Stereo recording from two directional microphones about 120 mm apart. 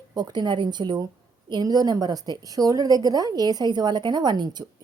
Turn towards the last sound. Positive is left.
turn(degrees=-35)  # may be behind; listen again after turning